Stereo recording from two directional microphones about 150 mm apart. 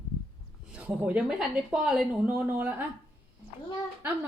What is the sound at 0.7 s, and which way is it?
A woman's voice, 10° right (ahead or behind).